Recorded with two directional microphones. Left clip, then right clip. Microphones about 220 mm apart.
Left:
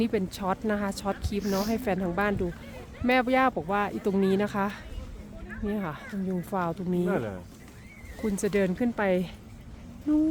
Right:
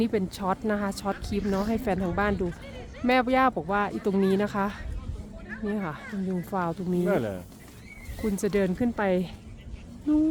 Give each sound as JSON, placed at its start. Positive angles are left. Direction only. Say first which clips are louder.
{"t": 0.0, "sound": "speech", "louder": "right 1 dB", "side_deg": 0}
{"t": 7.1, "sound": "speech", "louder": "right 6 dB", "side_deg": -45}
{"t": 8.4, "sound": "speech", "louder": "even", "side_deg": 0}